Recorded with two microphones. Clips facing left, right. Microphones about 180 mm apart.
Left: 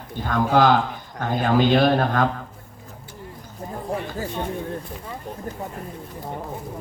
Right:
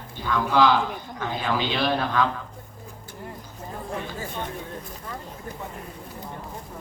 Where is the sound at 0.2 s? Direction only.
50° left (ahead or behind).